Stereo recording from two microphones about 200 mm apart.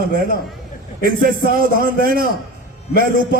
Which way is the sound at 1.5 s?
45° right (ahead or behind).